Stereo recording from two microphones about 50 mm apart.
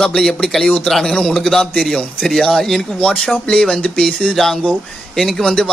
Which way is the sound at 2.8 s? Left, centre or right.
Centre.